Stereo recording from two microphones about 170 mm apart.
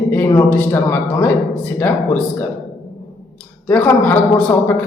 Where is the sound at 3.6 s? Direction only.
10° left (ahead or behind).